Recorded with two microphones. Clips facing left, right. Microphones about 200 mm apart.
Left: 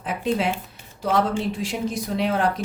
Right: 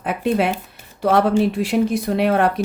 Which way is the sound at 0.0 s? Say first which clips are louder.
Right 4 dB; 60° right (ahead or behind).